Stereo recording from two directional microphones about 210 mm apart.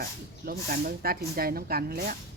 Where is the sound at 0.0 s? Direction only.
45° right (ahead or behind).